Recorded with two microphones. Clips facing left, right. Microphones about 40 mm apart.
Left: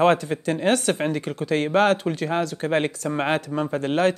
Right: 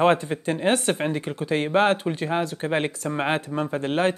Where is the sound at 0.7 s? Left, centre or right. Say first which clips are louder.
Left 1 dB; right.